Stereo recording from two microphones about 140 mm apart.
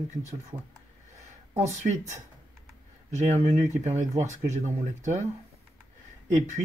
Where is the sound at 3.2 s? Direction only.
55° right (ahead or behind).